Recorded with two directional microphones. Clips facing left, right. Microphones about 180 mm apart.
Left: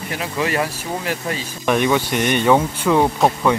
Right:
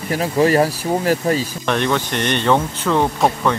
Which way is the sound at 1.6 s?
10° left (ahead or behind).